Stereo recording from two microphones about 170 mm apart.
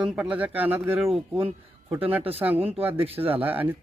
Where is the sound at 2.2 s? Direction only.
35° right (ahead or behind).